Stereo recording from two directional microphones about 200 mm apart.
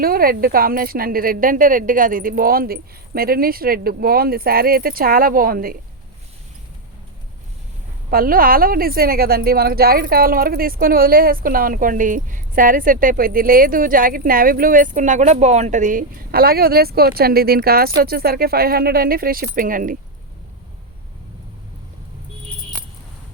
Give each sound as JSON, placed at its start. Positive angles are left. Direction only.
{"t": 0.0, "sound": "a woman's voice", "side_deg": -45}
{"t": 8.1, "sound": "a woman's voice", "side_deg": -45}